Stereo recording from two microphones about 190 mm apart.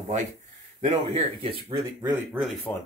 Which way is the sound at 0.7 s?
35° right (ahead or behind).